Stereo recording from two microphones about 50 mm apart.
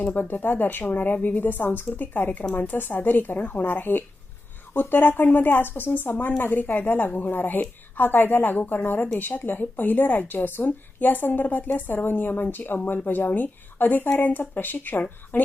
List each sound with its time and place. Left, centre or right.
0.0 s a woman's voice: left